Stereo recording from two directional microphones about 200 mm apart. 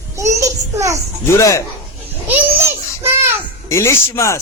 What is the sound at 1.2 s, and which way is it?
Music, 15° left (ahead or behind).